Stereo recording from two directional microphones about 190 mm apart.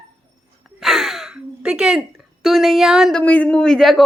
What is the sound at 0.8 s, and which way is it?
Gasp, centre (ahead or behind).